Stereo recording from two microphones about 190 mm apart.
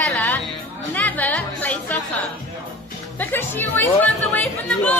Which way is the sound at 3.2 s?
10° left (ahead or behind).